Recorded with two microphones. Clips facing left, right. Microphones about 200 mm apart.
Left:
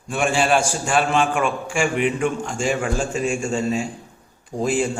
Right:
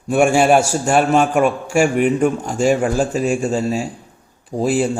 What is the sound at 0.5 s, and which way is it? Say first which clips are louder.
A man's voice: right 5 dB; 40° right (ahead or behind).